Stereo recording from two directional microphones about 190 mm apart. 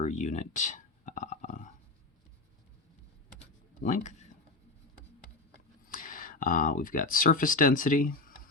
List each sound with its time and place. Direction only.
0.0 s a sound: 40° left (ahead or behind)
3.8 s speech: 40° left (ahead or behind)
5.8 s speech: 45° left (ahead or behind)